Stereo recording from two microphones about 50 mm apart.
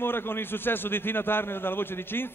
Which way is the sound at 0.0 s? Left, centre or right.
Left.